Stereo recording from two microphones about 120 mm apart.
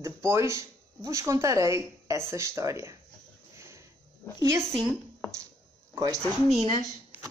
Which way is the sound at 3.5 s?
25° right (ahead or behind).